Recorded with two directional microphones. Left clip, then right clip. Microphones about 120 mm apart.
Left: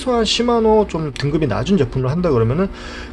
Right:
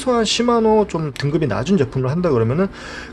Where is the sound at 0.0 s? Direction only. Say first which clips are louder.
Even; 15° right (ahead or behind).